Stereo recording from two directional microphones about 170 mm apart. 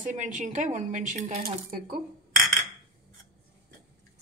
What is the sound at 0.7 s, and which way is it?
Speech, 45° right (ahead or behind).